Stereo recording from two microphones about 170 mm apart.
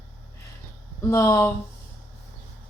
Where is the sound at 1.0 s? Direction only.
15° left (ahead or behind).